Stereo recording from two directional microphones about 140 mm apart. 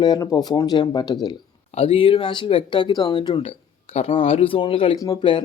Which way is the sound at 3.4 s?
45° left (ahead or behind).